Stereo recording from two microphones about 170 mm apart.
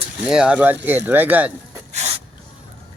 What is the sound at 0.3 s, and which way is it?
Speech, 5° right (ahead or behind).